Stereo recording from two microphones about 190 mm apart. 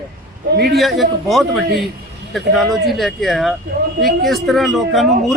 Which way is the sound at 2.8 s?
Centre (ahead or behind).